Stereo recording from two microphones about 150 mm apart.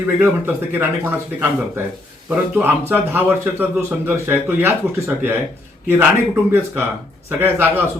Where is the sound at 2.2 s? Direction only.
15° right (ahead or behind).